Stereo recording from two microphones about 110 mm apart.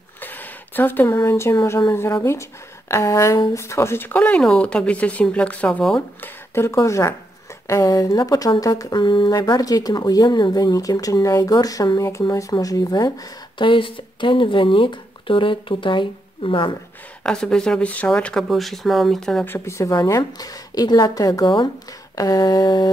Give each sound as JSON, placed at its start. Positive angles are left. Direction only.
{"t": 0.2, "sound": "speech", "side_deg": 15}
{"t": 6.2, "sound": "speech", "side_deg": 25}
{"t": 13.6, "sound": "speech", "side_deg": 50}
{"t": 17.2, "sound": "speech", "side_deg": 5}
{"t": 19.4, "sound": "speech", "side_deg": 20}